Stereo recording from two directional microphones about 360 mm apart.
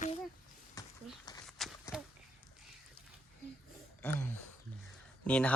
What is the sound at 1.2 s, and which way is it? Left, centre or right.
Walk, centre.